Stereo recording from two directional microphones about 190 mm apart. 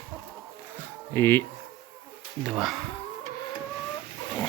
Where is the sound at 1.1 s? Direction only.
10° left (ahead or behind).